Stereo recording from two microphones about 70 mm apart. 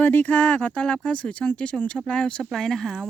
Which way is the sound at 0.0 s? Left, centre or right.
Left.